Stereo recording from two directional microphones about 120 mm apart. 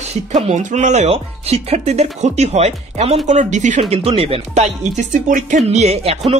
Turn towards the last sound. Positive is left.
turn(degrees=-60)  # may be behind; listen again after turning